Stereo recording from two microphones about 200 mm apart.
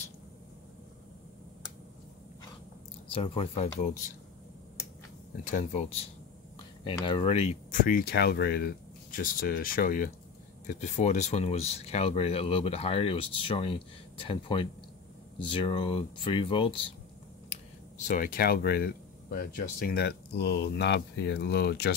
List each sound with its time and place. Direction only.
3.1 s speech: 25° left (ahead or behind)
5.4 s speech: 40° left (ahead or behind)
7.0 s speech: 25° left (ahead or behind)
7.8 s speech: 45° left (ahead or behind); by 16.8 s 25° left (ahead or behind)
17.5 s speech: 40° left (ahead or behind)